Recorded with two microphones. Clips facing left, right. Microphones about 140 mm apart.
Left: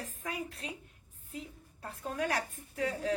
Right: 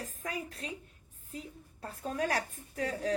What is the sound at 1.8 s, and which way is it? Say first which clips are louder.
Speech: right 1 dB; 40° right (ahead or behind).